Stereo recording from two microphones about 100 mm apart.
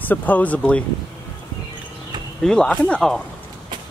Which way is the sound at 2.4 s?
5° left (ahead or behind).